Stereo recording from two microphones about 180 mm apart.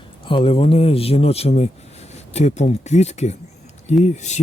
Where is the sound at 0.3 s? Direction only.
30° left (ahead or behind).